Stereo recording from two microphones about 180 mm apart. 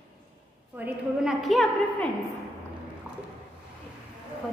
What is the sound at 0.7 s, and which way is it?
A woman's voice, 5° right (ahead or behind).